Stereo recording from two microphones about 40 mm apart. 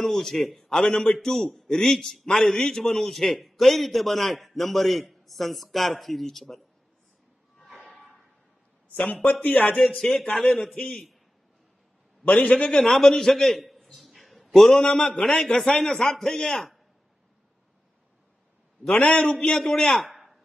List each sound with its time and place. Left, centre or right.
0.0 s a man's voice: centre
7.9 s a sound: centre
8.9 s a man's voice: left
9.7 s a man's voice: left
9.9 s a man's voice: centre
12.4 s a man's voice: left
12.7 s a man's voice: centre
15.3 s a man's voice: centre
18.9 s a man's voice: left
19.6 s a man's voice: centre